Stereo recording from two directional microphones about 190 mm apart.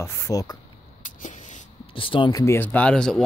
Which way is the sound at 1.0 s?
40° left (ahead or behind).